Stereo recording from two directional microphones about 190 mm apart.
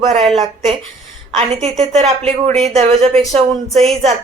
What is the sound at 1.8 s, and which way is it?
A woman's voice, 35° right (ahead or behind).